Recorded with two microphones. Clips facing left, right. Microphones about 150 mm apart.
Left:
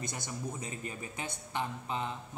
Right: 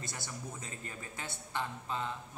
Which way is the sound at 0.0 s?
20° left (ahead or behind).